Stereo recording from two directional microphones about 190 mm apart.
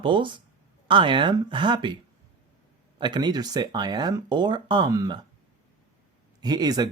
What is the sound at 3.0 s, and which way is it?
Speech, 20° right (ahead or behind).